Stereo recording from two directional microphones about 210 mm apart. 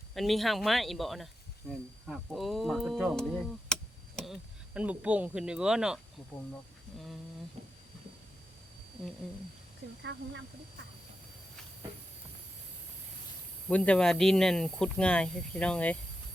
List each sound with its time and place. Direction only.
0.1 s speech: centre (ahead or behind)
10.0 s speech: 60° right (ahead or behind)
13.7 s speech: 5° left (ahead or behind)